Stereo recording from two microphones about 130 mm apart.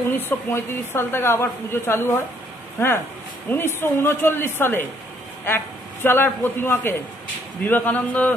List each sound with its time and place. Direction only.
0.1 s a woman's voice: 15° left (ahead or behind)
3.4 s a woman's voice: 15° left (ahead or behind)
6.0 s a woman's voice: 15° left (ahead or behind)